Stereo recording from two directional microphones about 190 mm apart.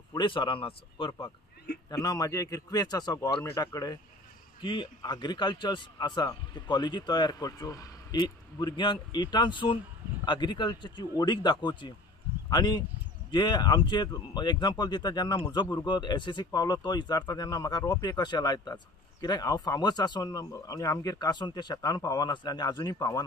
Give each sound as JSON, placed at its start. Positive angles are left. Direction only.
{"t": 0.1, "sound": "speech", "side_deg": 25}